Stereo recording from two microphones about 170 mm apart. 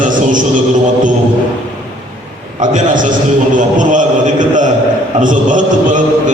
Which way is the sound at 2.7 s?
50° right (ahead or behind).